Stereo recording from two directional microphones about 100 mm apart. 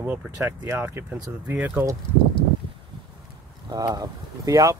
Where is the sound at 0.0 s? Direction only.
20° right (ahead or behind).